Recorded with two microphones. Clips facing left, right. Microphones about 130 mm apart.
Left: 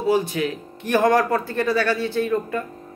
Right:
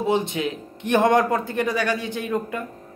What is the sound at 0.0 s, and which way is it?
Speech, 20° right (ahead or behind).